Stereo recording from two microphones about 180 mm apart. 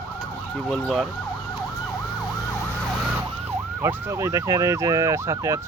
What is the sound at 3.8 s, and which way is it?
Ambulance, 15° right (ahead or behind).